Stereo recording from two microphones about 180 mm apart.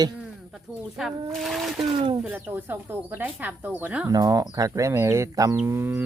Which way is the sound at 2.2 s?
10° right (ahead or behind).